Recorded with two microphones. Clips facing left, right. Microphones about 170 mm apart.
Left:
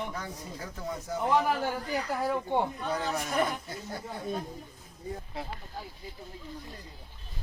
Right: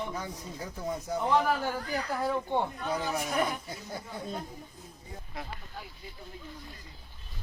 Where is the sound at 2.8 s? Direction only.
10° right (ahead or behind).